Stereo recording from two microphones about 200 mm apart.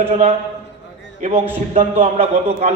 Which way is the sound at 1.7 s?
30° right (ahead or behind).